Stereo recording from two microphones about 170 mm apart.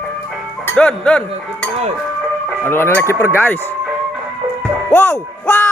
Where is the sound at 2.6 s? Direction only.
15° left (ahead or behind).